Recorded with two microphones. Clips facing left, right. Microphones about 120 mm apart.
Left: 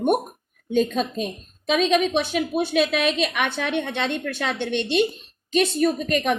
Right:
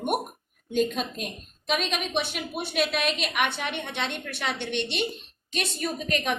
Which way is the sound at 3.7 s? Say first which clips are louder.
Left 7 dB; 55° left (ahead or behind).